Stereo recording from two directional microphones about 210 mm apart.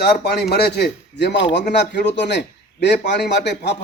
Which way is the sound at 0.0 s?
50° left (ahead or behind).